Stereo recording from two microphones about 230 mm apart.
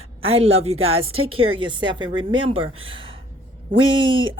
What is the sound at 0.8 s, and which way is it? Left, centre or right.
Speech, right.